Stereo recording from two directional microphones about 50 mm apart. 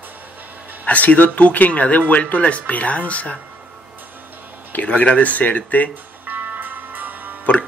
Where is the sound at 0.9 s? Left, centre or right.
Left.